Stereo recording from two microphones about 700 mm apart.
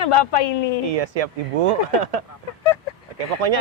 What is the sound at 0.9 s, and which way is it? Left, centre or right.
Speech, right.